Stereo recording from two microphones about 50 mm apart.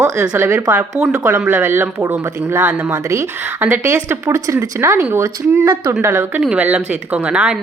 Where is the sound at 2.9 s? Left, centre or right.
Right.